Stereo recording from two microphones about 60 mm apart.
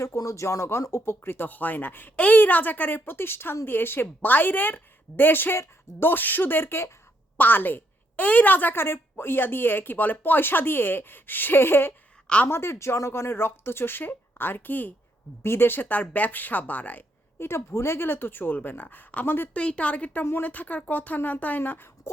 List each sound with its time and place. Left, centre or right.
0.2 s a woman's voice: left
7.3 s a woman's voice: left
17.4 s a woman's voice: left
19.5 s a woman's voice: left